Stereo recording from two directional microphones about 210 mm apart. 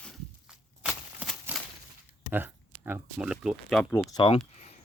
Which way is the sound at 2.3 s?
10° right (ahead or behind).